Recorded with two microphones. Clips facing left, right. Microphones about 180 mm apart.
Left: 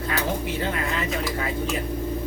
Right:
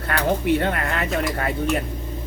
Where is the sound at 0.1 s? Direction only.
60° right (ahead or behind).